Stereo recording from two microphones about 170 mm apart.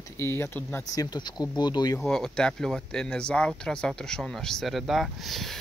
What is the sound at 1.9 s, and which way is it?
Speech, centre (ahead or behind).